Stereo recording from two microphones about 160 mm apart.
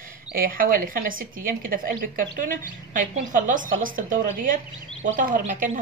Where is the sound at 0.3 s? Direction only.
60° right (ahead or behind).